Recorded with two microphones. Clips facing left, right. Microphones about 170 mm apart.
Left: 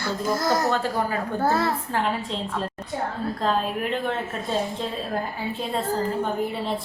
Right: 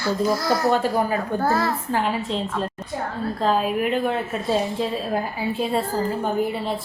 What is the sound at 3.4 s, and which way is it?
A woman's voice, 5° right (ahead or behind).